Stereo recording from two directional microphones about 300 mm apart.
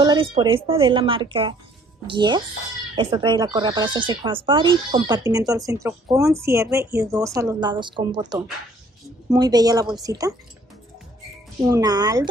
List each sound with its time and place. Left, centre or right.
0.0 s a woman's voice: centre
11.6 s speech: centre